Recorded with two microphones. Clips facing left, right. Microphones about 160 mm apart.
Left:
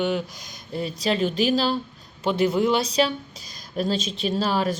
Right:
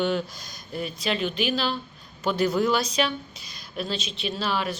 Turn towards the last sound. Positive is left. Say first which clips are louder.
# left 5 dB
turn(degrees=40)  # may be behind; listen again after turning